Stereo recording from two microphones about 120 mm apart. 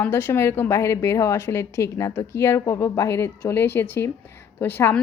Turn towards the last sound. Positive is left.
turn(degrees=20)  # may be behind; listen again after turning